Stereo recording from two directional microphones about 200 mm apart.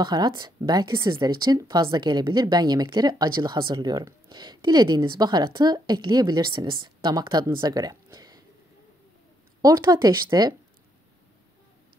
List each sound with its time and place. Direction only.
0.0 s speech: 20° right (ahead or behind)
9.6 s speech: 20° right (ahead or behind)